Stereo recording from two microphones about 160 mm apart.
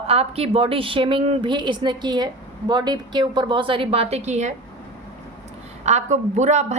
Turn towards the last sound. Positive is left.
turn(degrees=-45)  # may be behind; listen again after turning